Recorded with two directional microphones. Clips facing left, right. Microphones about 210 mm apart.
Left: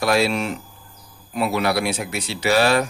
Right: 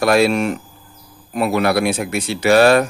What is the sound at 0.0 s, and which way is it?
Speech, 55° right (ahead or behind).